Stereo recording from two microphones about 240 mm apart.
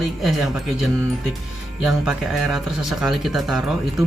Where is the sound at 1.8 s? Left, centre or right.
Centre.